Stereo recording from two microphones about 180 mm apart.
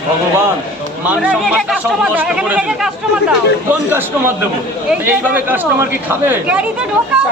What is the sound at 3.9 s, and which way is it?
Speech, 10° right (ahead or behind).